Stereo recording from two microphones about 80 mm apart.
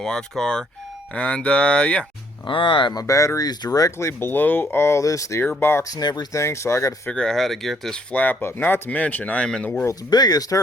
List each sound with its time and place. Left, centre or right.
0.0 s speech: centre
2.5 s speech: left
3.0 s speech: left
4.0 s speech: left
5.4 s speech: left
6.0 s speech: left
6.3 s speech: left
7.1 s speech: centre
8.1 s speech: left
10.1 s speech: left